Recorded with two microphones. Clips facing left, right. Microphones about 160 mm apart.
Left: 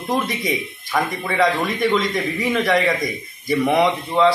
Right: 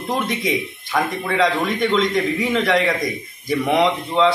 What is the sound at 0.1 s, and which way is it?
A man's voice, centre (ahead or behind).